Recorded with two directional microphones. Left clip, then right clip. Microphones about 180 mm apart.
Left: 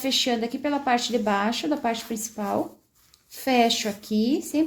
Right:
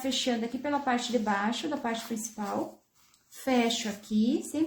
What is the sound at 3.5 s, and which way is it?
Speech, 50° left (ahead or behind).